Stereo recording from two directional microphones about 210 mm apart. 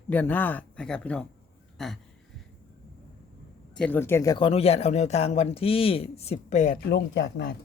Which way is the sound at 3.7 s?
5° left (ahead or behind).